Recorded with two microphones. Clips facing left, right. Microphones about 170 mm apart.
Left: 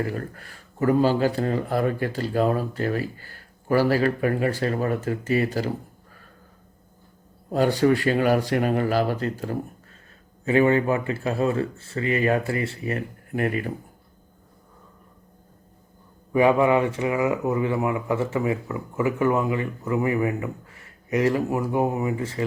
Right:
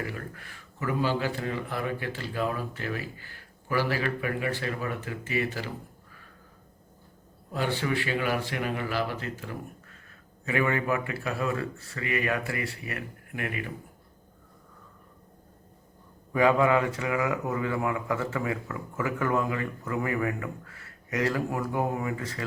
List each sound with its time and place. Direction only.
0.0 s a man's voice: 40° left (ahead or behind)
7.5 s a man's voice: 40° left (ahead or behind)
9.4 s a sound: 40° left (ahead or behind)
10.4 s a man's voice: 30° left (ahead or behind)
16.3 s speech: 20° left (ahead or behind)